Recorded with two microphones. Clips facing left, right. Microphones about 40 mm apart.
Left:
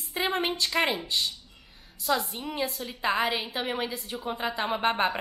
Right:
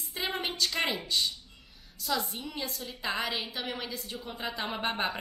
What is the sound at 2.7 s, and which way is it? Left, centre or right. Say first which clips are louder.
Speech: left 3 dB; centre.